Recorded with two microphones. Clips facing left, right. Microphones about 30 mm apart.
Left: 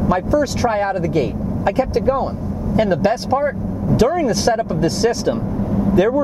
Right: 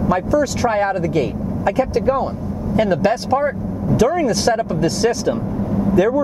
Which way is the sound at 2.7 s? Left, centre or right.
Centre.